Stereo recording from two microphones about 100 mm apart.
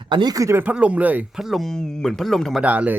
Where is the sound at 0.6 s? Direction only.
15° right (ahead or behind).